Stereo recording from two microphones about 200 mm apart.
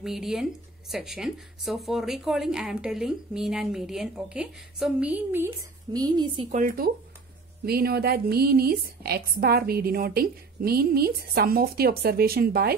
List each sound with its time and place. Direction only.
0.0 s speech: centre (ahead or behind); by 6.4 s 20° right (ahead or behind)
6.5 s a woman's voice: 45° right (ahead or behind)